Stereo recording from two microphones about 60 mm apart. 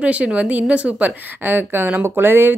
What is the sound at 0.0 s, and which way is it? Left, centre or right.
A woman's voice, right.